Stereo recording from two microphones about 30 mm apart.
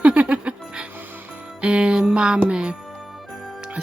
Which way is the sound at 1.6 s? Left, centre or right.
Right.